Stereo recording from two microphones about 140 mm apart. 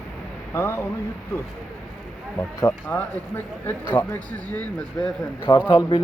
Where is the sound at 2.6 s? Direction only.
15° left (ahead or behind).